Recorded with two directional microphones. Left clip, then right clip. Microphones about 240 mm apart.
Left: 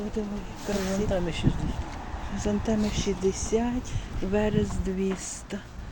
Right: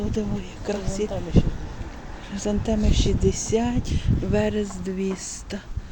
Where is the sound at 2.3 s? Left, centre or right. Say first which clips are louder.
Right 3 dB; centre.